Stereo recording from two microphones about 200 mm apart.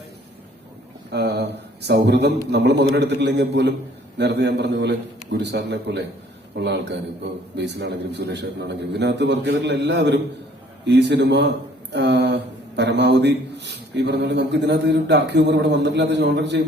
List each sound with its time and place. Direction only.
1.1 s a man's voice: 55° right (ahead or behind)